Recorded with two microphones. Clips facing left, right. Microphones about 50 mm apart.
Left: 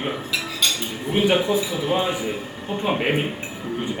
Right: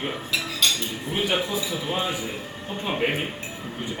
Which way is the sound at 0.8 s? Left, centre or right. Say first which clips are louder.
Left 6 dB; centre.